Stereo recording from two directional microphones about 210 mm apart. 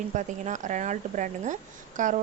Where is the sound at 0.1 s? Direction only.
35° right (ahead or behind).